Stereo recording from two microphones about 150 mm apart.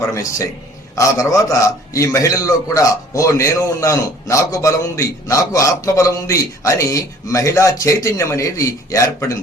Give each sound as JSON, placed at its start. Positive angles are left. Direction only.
{"t": 0.1, "sound": "a man's voice", "side_deg": 20}